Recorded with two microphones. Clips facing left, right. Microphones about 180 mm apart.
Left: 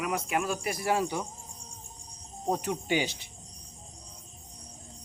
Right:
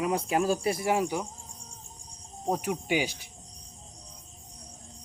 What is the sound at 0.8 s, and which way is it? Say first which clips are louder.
Speech: right 1 dB; 15° right (ahead or behind).